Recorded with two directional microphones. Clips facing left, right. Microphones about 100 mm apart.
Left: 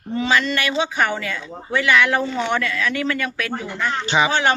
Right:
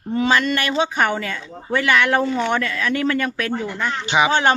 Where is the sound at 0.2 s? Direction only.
45° right (ahead or behind).